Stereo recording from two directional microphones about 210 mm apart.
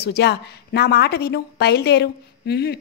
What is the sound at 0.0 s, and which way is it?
A woman's voice, 50° left (ahead or behind).